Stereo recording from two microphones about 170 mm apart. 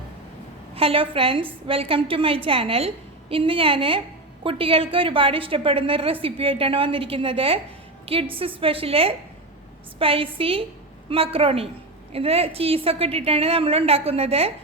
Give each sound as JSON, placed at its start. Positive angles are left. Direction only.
{"t": 0.8, "sound": "a woman's voice", "side_deg": -35}